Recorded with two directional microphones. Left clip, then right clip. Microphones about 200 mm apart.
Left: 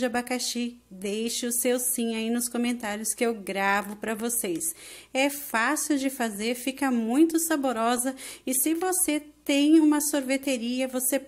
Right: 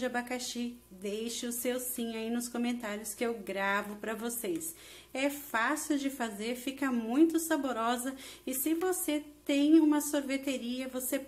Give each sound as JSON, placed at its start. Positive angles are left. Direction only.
{"t": 0.0, "sound": "a woman's voice", "side_deg": 40}